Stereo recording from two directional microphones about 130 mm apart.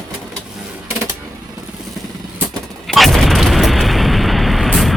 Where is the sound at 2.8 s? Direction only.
Centre (ahead or behind).